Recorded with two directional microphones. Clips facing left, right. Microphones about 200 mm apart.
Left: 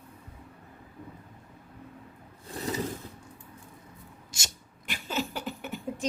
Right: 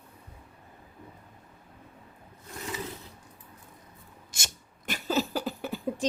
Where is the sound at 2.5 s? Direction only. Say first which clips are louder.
Left 5 dB; 35° left (ahead or behind).